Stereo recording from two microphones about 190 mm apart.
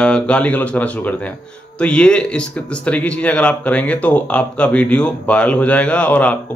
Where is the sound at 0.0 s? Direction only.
5° left (ahead or behind).